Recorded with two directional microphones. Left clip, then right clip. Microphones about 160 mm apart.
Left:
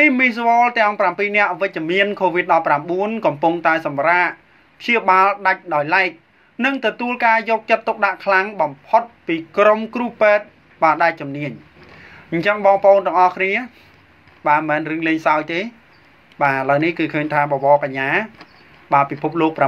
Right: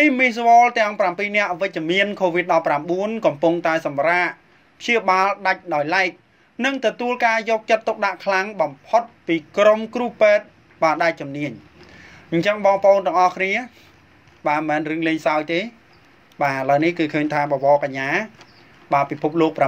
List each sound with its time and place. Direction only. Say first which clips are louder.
0.0 s speech: left 2 dB; 50° right (ahead or behind)